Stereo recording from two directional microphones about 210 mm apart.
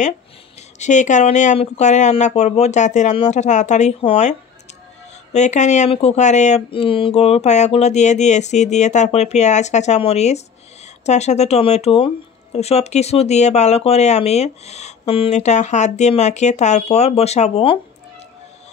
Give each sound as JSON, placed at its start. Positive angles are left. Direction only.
{"t": 0.7, "sound": "speech", "side_deg": 35}